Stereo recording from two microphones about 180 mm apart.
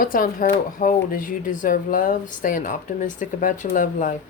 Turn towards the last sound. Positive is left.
turn(degrees=45)  # may be behind; listen again after turning